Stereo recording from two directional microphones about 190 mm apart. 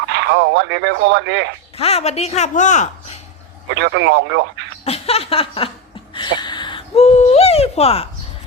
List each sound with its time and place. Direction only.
0.1 s speech: 65° right (ahead or behind)
1.8 s speech: 35° left (ahead or behind)
3.8 s speech: 65° right (ahead or behind)
4.9 s speech: 30° left (ahead or behind)
6.1 s a sound: 25° left (ahead or behind)